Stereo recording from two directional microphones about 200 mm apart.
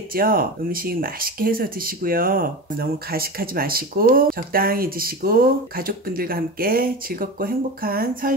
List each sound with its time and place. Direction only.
0.1 s speech: 45° right (ahead or behind)